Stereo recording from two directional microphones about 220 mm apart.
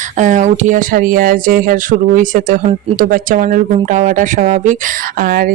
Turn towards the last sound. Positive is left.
turn(degrees=-40)  # may be behind; listen again after turning